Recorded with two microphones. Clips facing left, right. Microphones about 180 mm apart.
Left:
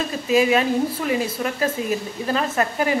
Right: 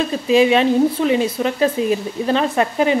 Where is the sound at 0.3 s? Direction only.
25° right (ahead or behind).